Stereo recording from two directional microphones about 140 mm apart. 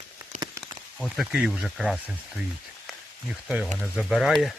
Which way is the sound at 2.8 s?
5° right (ahead or behind).